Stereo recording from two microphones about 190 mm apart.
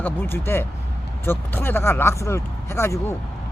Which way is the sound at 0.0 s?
10° left (ahead or behind).